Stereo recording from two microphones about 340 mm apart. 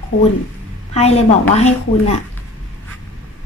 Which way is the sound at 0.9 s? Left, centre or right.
Centre.